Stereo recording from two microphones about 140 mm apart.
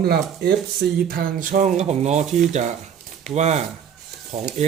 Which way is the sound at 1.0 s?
90° right.